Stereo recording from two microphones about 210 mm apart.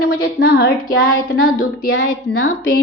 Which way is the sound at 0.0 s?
50° left (ahead or behind).